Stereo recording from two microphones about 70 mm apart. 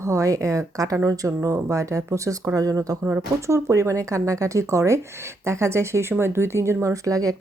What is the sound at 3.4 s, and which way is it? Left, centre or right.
Speech, right.